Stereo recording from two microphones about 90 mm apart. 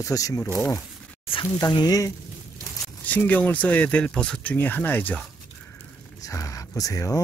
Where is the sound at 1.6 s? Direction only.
50° left (ahead or behind).